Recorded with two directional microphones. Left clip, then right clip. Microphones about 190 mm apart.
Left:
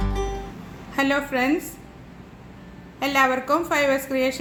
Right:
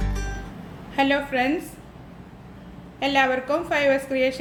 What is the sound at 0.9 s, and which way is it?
Speech, 35° left (ahead or behind).